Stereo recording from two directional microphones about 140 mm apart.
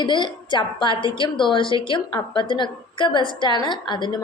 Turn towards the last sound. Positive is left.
turn(degrees=35)  # may be behind; listen again after turning